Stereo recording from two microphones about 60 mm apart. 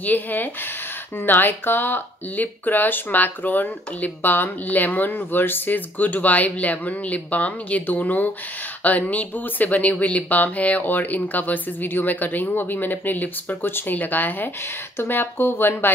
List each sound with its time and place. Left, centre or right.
0.0 s speech: left